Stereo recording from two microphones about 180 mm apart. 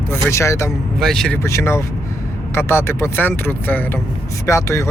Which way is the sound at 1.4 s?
15° left (ahead or behind).